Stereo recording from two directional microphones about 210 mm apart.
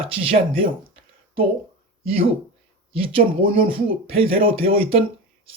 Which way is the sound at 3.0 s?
25° right (ahead or behind).